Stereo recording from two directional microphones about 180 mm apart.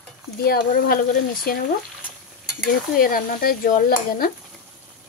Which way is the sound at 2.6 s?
50° left (ahead or behind).